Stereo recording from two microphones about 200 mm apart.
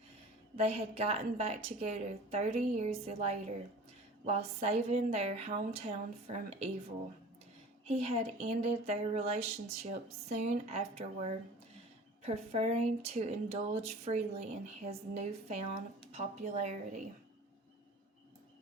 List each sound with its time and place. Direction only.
0.5 s speech: 30° right (ahead or behind)
7.9 s speech: 30° right (ahead or behind)